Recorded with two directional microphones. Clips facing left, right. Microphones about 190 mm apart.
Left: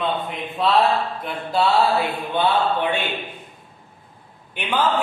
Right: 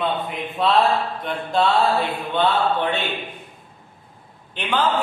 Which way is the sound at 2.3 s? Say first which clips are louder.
Even; 10° left (ahead or behind).